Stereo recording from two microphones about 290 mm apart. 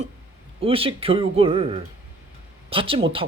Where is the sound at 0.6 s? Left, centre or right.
Centre.